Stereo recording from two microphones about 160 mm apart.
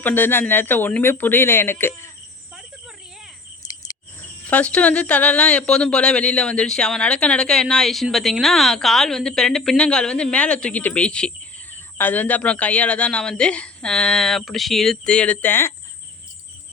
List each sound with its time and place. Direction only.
0.0 s speech: 10° left (ahead or behind)
3.6 s cricket: 25° left (ahead or behind)
4.2 s speech: 10° left (ahead or behind)